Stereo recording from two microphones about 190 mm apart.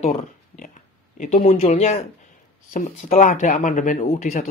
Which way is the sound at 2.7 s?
45° left (ahead or behind).